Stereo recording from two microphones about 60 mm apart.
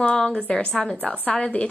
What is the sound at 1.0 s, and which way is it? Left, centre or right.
Speech, left.